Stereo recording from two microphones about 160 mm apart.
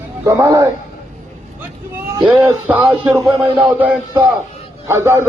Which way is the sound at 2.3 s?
10° right (ahead or behind).